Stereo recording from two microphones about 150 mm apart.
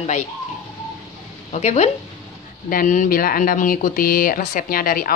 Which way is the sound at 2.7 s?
60° left (ahead or behind).